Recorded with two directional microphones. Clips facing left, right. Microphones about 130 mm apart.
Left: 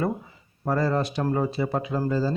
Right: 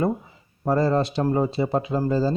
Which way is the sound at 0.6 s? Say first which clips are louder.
Right 3 dB; 25° right (ahead or behind).